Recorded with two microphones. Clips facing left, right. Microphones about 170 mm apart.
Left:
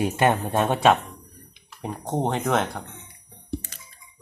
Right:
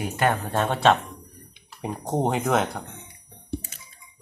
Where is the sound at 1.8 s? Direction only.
5° right (ahead or behind).